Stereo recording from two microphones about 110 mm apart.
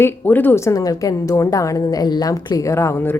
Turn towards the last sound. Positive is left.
turn(degrees=20)  # may be behind; listen again after turning